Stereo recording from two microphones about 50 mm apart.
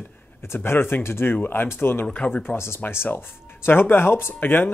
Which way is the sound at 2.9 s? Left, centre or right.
Left.